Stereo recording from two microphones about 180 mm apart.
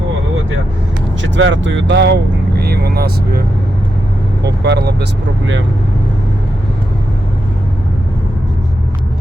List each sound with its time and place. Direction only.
1.2 s speech: 90° right; by 3.4 s 60° right (ahead or behind)
4.4 s speech: 70° right (ahead or behind)